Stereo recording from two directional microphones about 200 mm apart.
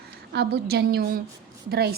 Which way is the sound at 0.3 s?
55° right (ahead or behind).